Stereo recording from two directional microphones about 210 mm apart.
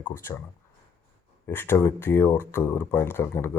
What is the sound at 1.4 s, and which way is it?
Speech, 10° left (ahead or behind).